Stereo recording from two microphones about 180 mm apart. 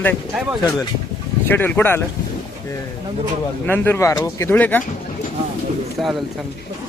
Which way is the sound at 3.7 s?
15° left (ahead or behind).